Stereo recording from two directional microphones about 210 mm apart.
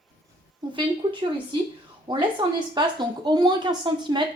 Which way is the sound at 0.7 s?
20° right (ahead or behind).